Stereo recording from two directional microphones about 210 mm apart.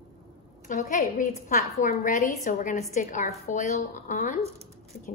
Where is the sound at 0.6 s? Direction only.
40° left (ahead or behind).